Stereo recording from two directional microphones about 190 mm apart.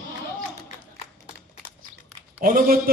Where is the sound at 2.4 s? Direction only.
50° right (ahead or behind).